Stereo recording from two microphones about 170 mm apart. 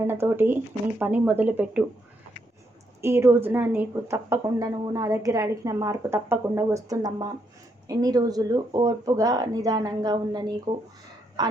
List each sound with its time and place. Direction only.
0.1 s speech: 15° right (ahead or behind)
3.0 s speech: 15° right (ahead or behind)